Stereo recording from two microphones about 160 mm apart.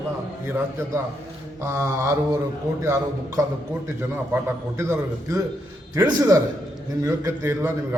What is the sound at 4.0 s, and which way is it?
A man's voice, 15° right (ahead or behind).